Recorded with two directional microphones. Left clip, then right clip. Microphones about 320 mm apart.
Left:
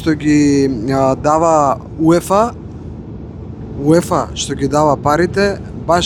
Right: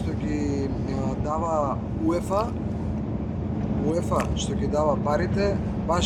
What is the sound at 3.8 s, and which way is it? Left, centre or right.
Speech, left.